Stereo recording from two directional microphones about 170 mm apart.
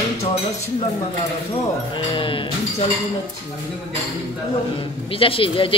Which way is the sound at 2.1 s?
30° left (ahead or behind).